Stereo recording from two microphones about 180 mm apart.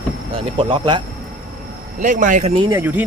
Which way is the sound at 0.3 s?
30° right (ahead or behind).